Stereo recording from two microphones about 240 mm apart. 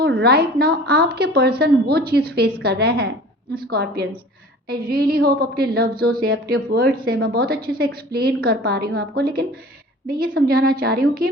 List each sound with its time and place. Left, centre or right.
0.0 s a woman's voice: right